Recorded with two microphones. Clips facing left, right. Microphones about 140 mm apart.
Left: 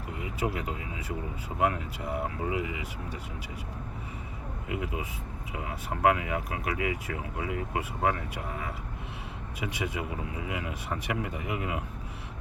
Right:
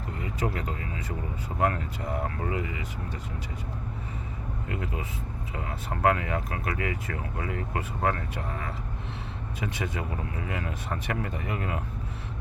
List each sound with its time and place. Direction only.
0.2 s speech: 10° left (ahead or behind)
4.7 s speech: 10° left (ahead or behind)